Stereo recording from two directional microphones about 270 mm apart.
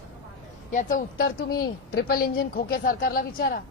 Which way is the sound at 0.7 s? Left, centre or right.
Left.